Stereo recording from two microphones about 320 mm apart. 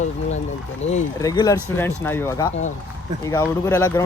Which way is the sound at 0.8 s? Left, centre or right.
Left.